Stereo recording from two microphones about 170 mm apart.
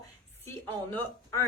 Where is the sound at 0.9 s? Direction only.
15° left (ahead or behind).